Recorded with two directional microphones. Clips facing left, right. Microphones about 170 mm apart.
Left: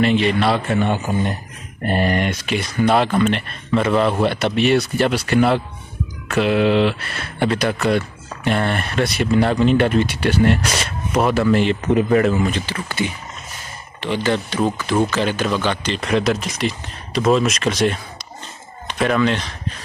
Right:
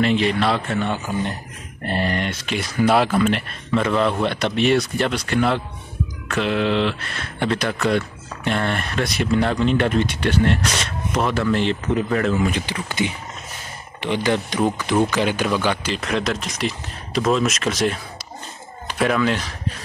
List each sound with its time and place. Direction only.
0.0 s speech: centre (ahead or behind)
0.7 s speech: 15° left (ahead or behind)
2.5 s speech: 5° right (ahead or behind); by 12.4 s 10° left (ahead or behind)
12.4 s speech: 15° right (ahead or behind)